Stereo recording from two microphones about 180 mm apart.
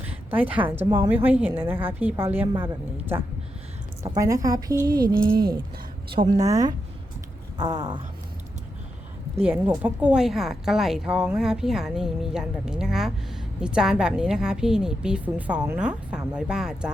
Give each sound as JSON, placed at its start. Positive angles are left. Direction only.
{"t": 0.0, "sound": "a sound", "side_deg": -10}
{"t": 0.9, "sound": "a woman's voice", "side_deg": -15}
{"t": 4.9, "sound": "speech", "side_deg": -55}
{"t": 6.3, "sound": "a woman's voice", "side_deg": -20}
{"t": 9.5, "sound": "speech", "side_deg": -10}